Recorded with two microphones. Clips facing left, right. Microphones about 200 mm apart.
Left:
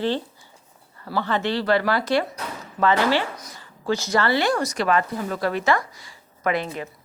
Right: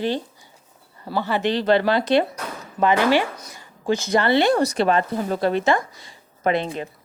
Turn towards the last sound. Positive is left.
turn(degrees=-25)  # may be behind; listen again after turning